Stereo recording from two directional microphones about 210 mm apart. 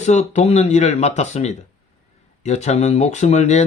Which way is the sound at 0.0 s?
35° left (ahead or behind).